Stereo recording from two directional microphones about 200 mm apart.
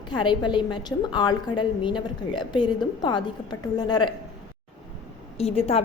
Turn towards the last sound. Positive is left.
turn(degrees=30)  # may be behind; listen again after turning